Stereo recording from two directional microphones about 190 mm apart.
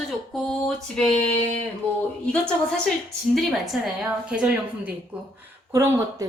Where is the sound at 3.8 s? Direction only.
5° right (ahead or behind).